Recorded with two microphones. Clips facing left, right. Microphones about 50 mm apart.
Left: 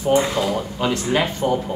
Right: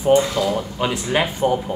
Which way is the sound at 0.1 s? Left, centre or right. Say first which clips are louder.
Right 2 dB; left.